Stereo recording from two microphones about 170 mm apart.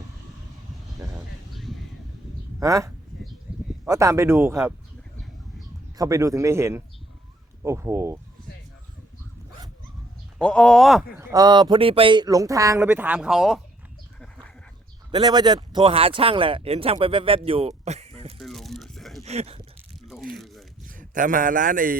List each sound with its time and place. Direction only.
1.5 s a sound: centre (ahead or behind)
2.6 s speech: 20° right (ahead or behind)
6.0 s speech: 20° right (ahead or behind)
10.4 s speech: 5° left (ahead or behind)
11.2 s speech: 20° right (ahead or behind); by 13.6 s 5° right (ahead or behind)
15.1 s speech: 25° right (ahead or behind)
18.3 s a sound: centre (ahead or behind)
19.2 s speech: 40° right (ahead or behind)
20.1 s tearing: centre (ahead or behind)
20.8 s a man's voice: 50° right (ahead or behind)